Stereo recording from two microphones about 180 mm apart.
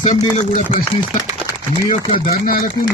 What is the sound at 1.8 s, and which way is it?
Chopping, 50° left (ahead or behind).